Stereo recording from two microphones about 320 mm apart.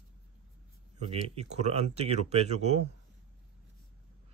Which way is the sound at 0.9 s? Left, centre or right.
Centre.